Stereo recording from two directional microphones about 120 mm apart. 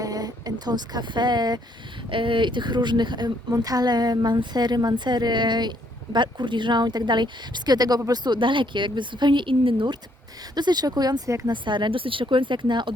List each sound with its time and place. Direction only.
0.0 s speech: 30° right (ahead or behind)